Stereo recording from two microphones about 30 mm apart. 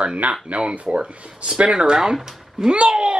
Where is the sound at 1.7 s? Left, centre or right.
Right.